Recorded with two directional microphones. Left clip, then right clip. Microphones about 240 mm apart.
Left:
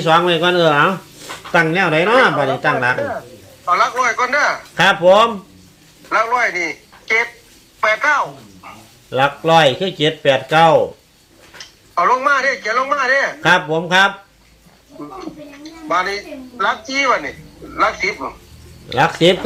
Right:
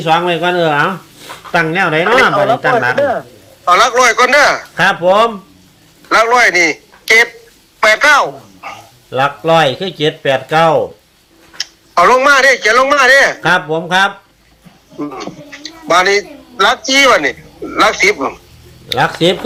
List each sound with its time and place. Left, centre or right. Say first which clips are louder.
0.0 s speech: right 1 dB; centre
3.7 s a man's voice: right 7 dB; right
4.7 s speech: right 1 dB; centre
6.1 s a man's voice: right 7 dB; right
9.0 s speech: right 2 dB; centre
11.5 s speech: right 7 dB; right
13.4 s speech: right 1 dB; centre
14.9 s a man's voice: right 7 dB; right
18.9 s speech: right 1 dB; centre